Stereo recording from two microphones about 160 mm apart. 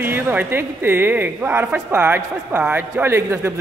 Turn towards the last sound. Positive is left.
turn(degrees=-15)  # may be behind; listen again after turning